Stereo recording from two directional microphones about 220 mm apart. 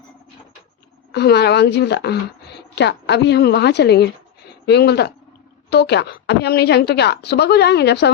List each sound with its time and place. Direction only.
1.1 s a woman's voice: 50° left (ahead or behind)